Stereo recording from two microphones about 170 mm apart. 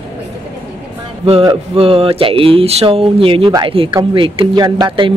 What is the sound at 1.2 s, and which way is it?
Speech, 35° right (ahead or behind).